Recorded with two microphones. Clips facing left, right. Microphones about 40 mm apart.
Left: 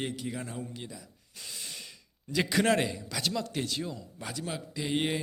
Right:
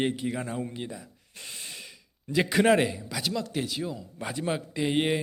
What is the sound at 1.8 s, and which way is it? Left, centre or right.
Speech, centre.